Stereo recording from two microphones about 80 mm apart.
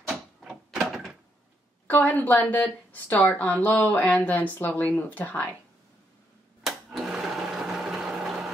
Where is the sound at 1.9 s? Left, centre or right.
Left.